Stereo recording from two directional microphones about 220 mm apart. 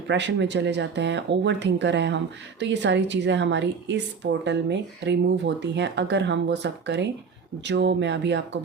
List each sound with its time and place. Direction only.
0.1 s speech: 55° right (ahead or behind)